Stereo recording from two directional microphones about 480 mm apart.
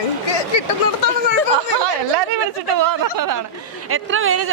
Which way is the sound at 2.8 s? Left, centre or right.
Right.